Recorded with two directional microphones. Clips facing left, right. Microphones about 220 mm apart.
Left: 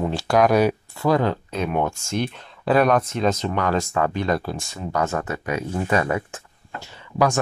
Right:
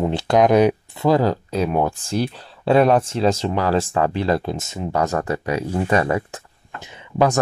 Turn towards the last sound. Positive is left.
turn(degrees=-20)  # may be behind; listen again after turning